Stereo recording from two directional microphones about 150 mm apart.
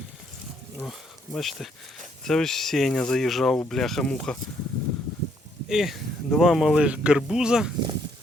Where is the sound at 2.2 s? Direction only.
5° left (ahead or behind).